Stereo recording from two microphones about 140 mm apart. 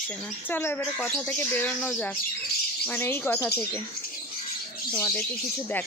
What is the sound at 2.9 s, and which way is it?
Speech, 15° left (ahead or behind).